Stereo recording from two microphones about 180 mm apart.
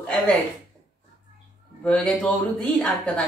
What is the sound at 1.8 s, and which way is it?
Speech, 5° left (ahead or behind).